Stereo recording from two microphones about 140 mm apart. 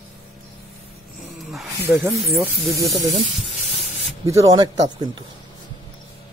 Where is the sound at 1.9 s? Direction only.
15° right (ahead or behind).